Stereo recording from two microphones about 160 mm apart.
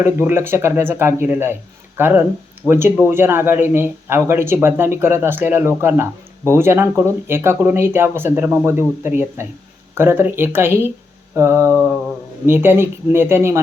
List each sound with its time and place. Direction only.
0.0 s speech: 15° right (ahead or behind)